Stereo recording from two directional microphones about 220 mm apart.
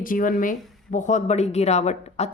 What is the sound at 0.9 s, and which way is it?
Speech, 35° left (ahead or behind).